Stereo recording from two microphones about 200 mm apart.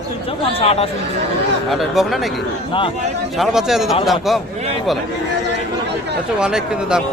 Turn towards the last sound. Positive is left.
turn(degrees=-5)  # may be behind; listen again after turning